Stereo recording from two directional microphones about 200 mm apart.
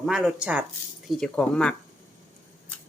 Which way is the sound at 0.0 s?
5° right (ahead or behind).